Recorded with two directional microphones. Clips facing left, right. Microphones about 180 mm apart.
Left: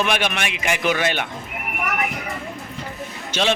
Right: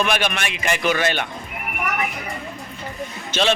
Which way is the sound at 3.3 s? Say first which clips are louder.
Right 1 dB; 10° left (ahead or behind).